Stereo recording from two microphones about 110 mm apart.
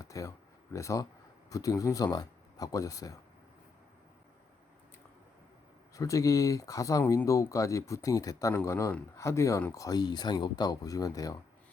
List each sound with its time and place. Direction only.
0.0 s speech: 30° left (ahead or behind)
5.9 s speech: 30° left (ahead or behind)